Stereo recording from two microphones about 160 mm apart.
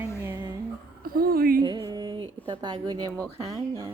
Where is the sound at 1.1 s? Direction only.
65° right (ahead or behind).